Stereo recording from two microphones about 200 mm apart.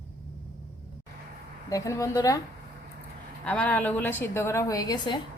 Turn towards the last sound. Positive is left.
turn(degrees=20)  # may be behind; listen again after turning